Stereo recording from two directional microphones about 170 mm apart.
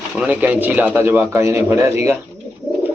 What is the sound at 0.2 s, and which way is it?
A man's voice, 10° right (ahead or behind).